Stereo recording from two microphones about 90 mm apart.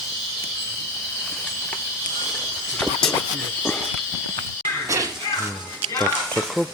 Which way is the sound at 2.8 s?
10° left (ahead or behind).